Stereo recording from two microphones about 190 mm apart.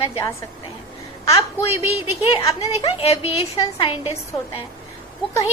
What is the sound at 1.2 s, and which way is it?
A woman's voice, 30° left (ahead or behind).